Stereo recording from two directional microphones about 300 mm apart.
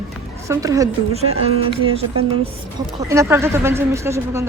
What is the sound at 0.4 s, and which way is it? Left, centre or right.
Speech, centre.